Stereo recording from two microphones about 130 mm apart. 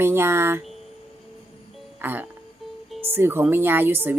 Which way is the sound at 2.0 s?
15° right (ahead or behind).